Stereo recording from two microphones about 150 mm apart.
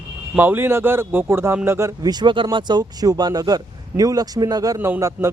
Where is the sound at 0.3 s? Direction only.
15° right (ahead or behind).